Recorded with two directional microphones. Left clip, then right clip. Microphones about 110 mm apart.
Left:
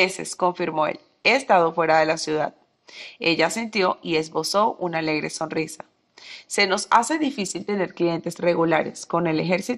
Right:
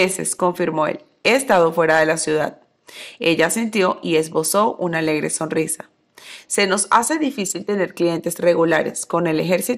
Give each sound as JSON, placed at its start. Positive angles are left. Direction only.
{"t": 0.0, "sound": "a woman's voice", "side_deg": -35}